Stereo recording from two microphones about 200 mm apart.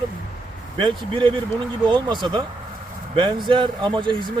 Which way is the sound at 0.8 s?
25° right (ahead or behind).